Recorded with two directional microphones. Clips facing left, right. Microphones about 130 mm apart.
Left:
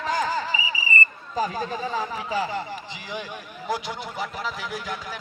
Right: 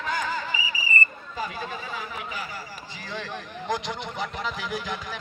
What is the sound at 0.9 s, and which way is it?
Whistle, 30° left (ahead or behind).